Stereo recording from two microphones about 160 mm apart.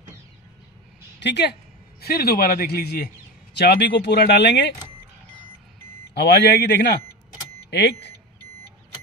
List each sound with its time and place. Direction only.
1.2 s a man's voice: 90° left
3.5 s speech: 90° left
6.1 s speech: 90° left